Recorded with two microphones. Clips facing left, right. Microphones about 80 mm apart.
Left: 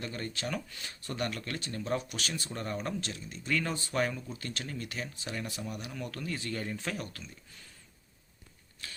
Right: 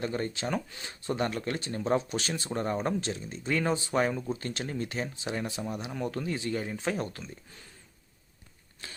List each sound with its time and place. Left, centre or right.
0.0 s speech: right